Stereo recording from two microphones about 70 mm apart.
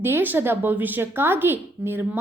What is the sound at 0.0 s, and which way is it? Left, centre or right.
A woman's voice, right.